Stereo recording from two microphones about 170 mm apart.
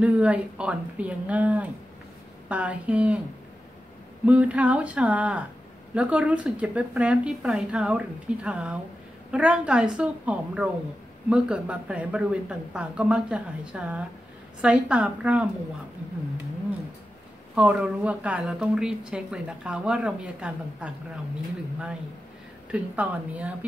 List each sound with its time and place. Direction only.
0.0 s a woman's voice: 10° right (ahead or behind)
4.3 s a woman's voice: 10° right (ahead or behind)
17.6 s a woman's voice: 5° right (ahead or behind)
22.7 s a woman's voice: 5° right (ahead or behind)